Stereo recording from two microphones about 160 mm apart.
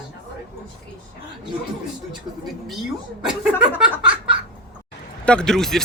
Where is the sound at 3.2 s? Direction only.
5° right (ahead or behind).